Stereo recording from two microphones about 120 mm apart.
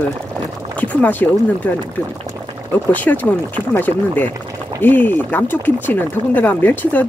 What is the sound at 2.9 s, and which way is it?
Speech, 15° left (ahead or behind).